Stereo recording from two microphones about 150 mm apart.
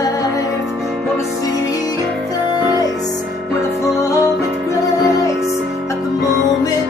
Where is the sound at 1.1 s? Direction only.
25° left (ahead or behind).